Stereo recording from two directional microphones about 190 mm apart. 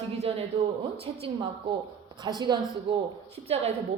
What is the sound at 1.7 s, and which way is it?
A woman's voice, 25° right (ahead or behind).